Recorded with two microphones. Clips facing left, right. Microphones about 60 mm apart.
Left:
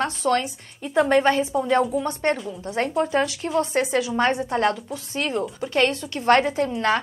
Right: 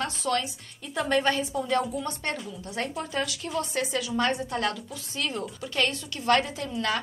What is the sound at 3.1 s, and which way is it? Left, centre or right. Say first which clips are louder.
A woman's voice: left 8 dB; left.